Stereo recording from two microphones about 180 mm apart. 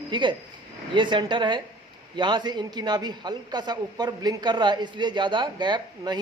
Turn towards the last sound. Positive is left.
turn(degrees=-25)  # may be behind; listen again after turning